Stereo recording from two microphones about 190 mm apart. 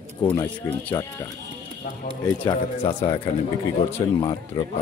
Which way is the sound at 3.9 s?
20° left (ahead or behind).